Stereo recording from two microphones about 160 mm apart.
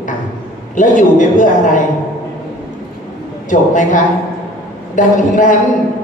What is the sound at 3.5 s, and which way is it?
A woman's voice, 55° left (ahead or behind).